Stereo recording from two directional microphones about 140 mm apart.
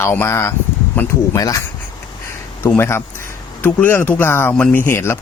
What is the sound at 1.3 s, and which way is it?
Speech, 25° left (ahead or behind).